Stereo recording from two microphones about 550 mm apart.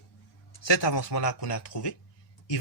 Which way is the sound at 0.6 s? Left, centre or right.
Left.